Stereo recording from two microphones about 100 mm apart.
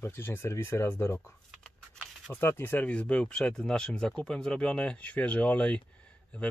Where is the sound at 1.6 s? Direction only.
5° left (ahead or behind).